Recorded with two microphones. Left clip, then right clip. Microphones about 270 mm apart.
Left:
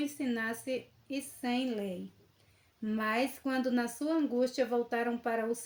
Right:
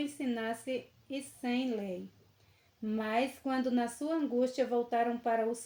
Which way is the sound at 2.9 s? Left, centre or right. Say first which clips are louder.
Left 1 dB; left.